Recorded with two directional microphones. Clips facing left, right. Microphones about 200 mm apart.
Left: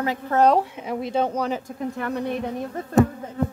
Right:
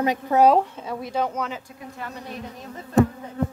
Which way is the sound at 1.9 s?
60° left (ahead or behind).